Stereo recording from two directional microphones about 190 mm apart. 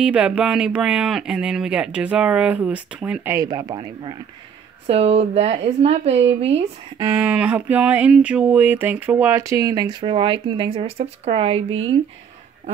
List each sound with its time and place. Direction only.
0.0 s speech: 5° right (ahead or behind)
3.3 s speech: 20° right (ahead or behind)
7.0 s a sound: 10° right (ahead or behind); by 11.6 s 30° right (ahead or behind)